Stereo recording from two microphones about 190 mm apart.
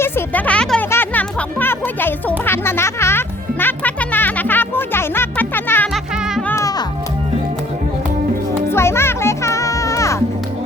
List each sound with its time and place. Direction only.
0.0 s speech: 10° left (ahead or behind)
0.9 s music: 10° left (ahead or behind)
8.7 s music: 15° left (ahead or behind)